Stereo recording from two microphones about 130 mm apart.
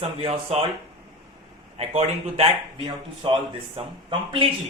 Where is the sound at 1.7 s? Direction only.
50° right (ahead or behind).